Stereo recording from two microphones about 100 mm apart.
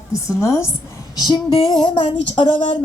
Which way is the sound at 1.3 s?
55° left (ahead or behind).